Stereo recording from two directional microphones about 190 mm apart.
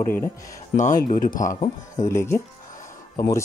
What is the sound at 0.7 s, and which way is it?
Speech, 40° left (ahead or behind).